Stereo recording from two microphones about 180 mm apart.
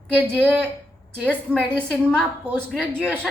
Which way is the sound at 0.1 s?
10° right (ahead or behind).